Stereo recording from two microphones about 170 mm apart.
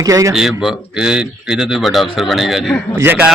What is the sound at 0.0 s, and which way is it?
Speech, 20° right (ahead or behind).